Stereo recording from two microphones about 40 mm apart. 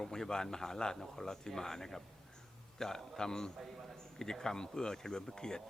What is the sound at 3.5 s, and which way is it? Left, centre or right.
Speech, centre.